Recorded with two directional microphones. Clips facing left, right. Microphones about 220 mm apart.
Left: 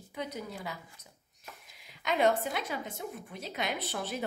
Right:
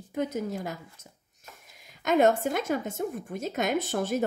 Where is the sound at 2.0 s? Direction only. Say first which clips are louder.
Right 6 dB; 45° right (ahead or behind).